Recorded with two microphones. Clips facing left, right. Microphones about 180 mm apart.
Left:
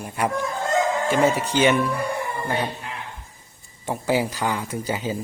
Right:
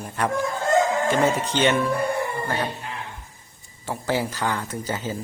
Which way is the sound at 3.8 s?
15° left (ahead or behind).